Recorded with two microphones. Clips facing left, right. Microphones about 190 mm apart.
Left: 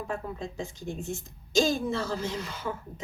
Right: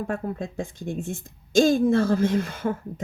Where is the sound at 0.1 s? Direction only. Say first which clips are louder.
Right 5 dB; 50° right (ahead or behind).